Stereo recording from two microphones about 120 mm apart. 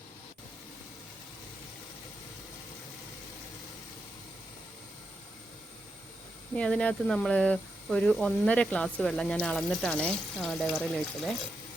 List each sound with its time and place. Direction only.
6.6 s speech: 10° left (ahead or behind)